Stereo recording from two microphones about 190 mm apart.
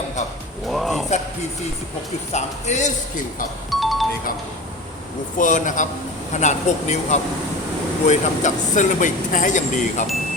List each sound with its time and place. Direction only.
0.7 s speech: centre (ahead or behind)
2.3 s speech: 35° left (ahead or behind)
3.7 s music: centre (ahead or behind)
5.4 s speech: 40° left (ahead or behind)